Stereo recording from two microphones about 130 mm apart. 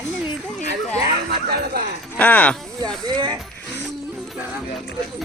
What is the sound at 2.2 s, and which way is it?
Speech, 10° left (ahead or behind).